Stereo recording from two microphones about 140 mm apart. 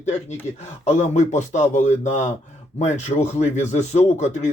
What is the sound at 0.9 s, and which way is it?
Speech, 60° left (ahead or behind).